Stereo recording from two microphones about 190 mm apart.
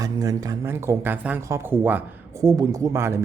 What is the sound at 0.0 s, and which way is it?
Speech, 20° right (ahead or behind).